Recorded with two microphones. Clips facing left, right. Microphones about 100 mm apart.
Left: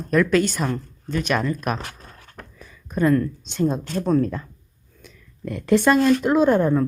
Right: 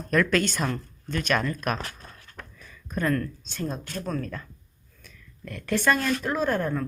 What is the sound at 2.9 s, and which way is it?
Speech, 15° left (ahead or behind).